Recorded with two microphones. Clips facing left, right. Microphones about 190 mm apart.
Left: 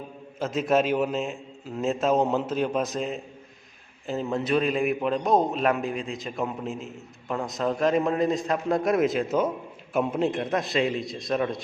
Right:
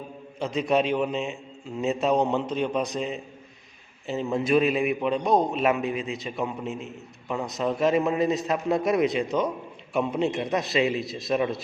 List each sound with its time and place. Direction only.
0.3 s a man's voice: 5° left (ahead or behind)